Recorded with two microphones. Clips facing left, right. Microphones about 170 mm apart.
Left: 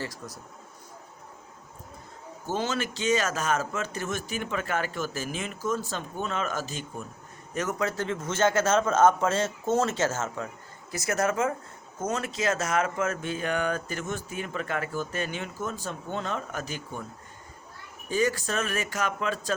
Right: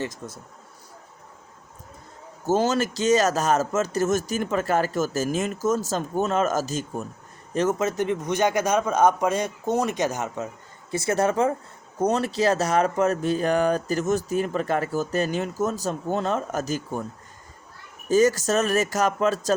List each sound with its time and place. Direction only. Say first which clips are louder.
0.0 s speech: right 5 dB; 20° right (ahead or behind)
2.5 s speech: right 8 dB; 40° right (ahead or behind)
7.5 s a man's voice: right 6 dB; 30° right (ahead or behind)
10.9 s speech: right 5 dB; 30° right (ahead or behind)
18.1 s speech: right 8 dB; 40° right (ahead or behind)